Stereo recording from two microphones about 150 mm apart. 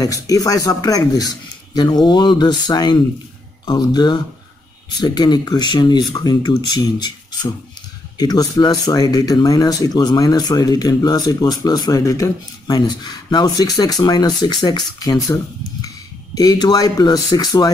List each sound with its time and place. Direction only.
0.0 s speech: 25° left (ahead or behind)
8.2 s speech: 25° left (ahead or behind)
16.3 s speech: 25° left (ahead or behind)